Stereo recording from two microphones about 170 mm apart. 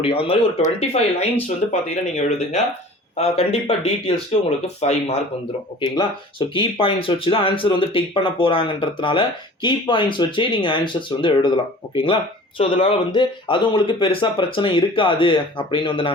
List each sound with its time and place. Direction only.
0.0 s speech: 35° left (ahead or behind)
6.5 s speech: 30° left (ahead or behind)